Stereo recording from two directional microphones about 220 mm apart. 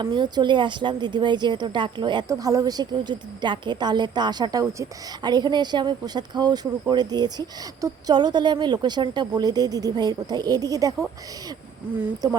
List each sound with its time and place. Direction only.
0.0 s speech: 20° right (ahead or behind)
12.2 s speech: 15° right (ahead or behind)